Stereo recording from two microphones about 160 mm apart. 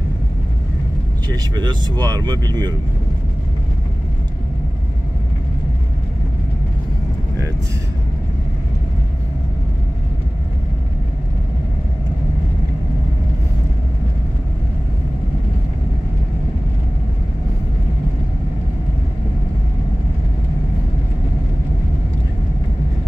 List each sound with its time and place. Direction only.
1.3 s speech: 25° right (ahead or behind)